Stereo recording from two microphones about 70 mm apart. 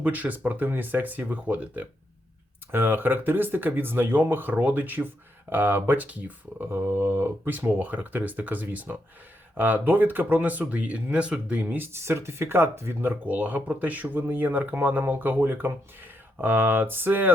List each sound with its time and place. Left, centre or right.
0.0 s speech: right
6.7 s speech: right
13.2 s speech: right